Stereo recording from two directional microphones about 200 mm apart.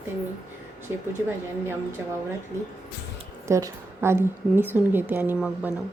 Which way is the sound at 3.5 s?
15° right (ahead or behind).